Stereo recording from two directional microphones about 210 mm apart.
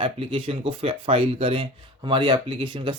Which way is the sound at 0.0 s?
25° right (ahead or behind).